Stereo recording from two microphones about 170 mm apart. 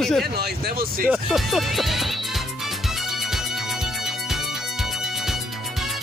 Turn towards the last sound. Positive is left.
turn(degrees=0)  # may be behind; listen again after turning